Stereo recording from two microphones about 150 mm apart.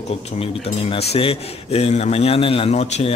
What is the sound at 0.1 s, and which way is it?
A man's voice, 40° left (ahead or behind).